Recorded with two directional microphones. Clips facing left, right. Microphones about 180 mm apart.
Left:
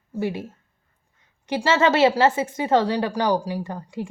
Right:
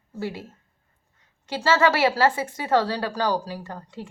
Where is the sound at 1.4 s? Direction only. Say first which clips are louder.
Left 1 dB; 20° left (ahead or behind).